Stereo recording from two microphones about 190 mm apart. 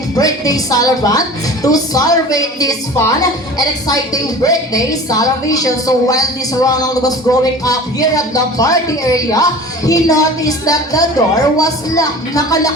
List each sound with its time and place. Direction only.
0.2 s a woman's voice: 20° left (ahead or behind)